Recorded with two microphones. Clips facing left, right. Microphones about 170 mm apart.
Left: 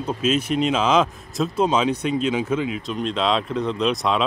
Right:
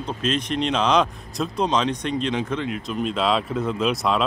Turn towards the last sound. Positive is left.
turn(degrees=0)  # may be behind; listen again after turning